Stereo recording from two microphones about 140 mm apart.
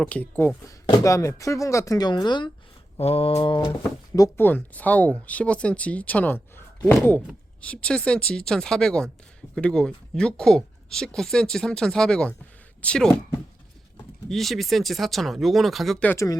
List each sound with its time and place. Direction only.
0.0 s speech: 10° left (ahead or behind); by 2.5 s 30° left (ahead or behind)
3.0 s mantra: 45° left (ahead or behind)
3.3 s a sound: 35° left (ahead or behind)
4.4 s speech: 15° left (ahead or behind)
14.3 s speech: centre (ahead or behind)
16.0 s speech: 20° left (ahead or behind)